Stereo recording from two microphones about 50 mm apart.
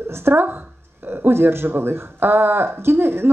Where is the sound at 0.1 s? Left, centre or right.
Right.